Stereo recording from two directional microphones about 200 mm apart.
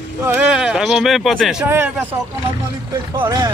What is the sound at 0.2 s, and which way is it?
Speech, 5° right (ahead or behind).